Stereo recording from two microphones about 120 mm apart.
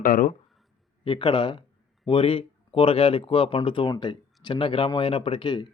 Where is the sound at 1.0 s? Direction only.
45° left (ahead or behind).